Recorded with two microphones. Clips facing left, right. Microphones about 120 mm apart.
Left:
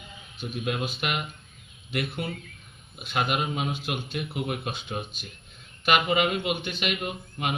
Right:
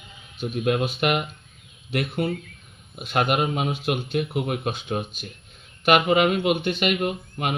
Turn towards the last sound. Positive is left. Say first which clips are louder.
# right 5 dB
turn(degrees=-50)  # may be behind; listen again after turning